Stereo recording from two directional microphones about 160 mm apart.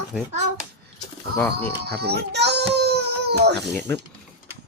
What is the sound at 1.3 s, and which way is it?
Speech, 15° left (ahead or behind).